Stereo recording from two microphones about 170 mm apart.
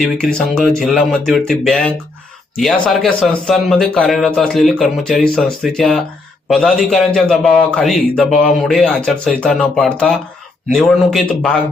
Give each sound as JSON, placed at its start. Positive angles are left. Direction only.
{"t": 0.0, "sound": "a man's voice", "side_deg": 5}